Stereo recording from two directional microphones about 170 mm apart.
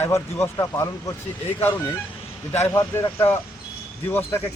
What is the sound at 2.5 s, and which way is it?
Speech, 15° left (ahead or behind).